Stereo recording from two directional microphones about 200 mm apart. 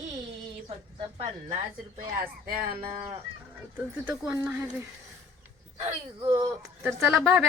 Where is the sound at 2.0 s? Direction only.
45° right (ahead or behind).